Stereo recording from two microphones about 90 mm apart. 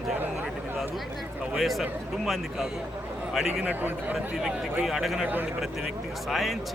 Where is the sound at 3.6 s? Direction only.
20° right (ahead or behind).